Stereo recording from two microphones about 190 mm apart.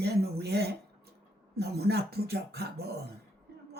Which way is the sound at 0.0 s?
60° right (ahead or behind).